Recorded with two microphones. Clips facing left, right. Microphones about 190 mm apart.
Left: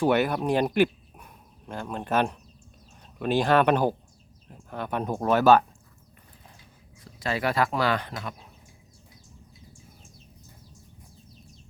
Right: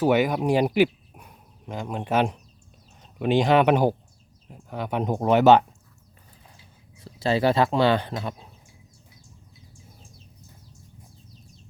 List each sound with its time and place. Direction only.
0.0 s speech: 10° right (ahead or behind)
7.0 s speech: 30° right (ahead or behind)